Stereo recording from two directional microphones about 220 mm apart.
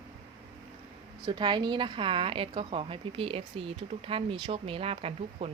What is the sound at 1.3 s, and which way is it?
A woman's voice, 20° right (ahead or behind).